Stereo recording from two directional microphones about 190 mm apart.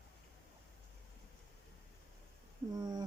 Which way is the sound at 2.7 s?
20° right (ahead or behind).